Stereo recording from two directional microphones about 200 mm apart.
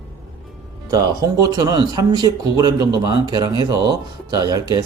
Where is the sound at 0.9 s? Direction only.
15° right (ahead or behind).